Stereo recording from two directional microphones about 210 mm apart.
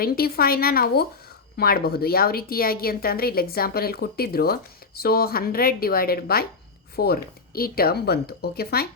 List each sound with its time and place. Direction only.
0.0 s speech: 45° left (ahead or behind)